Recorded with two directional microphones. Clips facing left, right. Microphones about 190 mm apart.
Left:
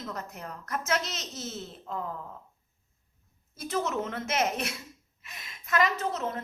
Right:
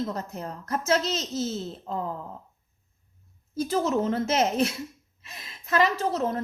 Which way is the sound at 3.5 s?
30° right (ahead or behind).